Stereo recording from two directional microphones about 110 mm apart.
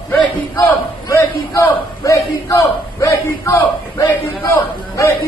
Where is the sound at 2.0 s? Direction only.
30° left (ahead or behind).